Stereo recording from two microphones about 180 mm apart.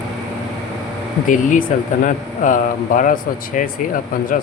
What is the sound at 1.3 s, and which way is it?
Speech, 45° left (ahead or behind).